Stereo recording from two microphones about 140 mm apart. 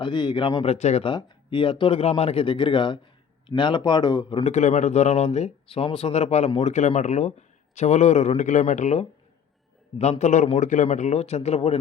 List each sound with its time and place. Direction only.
0.0 s speech: 35° left (ahead or behind); by 1.0 s 50° left (ahead or behind)
1.0 s speech: 35° left (ahead or behind)
4.4 s a man's voice: 55° left (ahead or behind)